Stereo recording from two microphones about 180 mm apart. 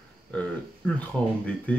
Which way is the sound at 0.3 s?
5° left (ahead or behind).